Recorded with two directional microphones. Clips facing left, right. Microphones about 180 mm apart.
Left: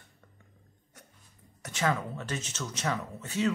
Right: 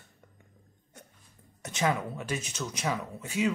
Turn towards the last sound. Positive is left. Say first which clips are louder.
# even
turn(degrees=-10)  # may be behind; listen again after turning